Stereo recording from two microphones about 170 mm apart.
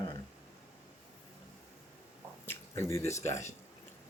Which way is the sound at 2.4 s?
15° left (ahead or behind).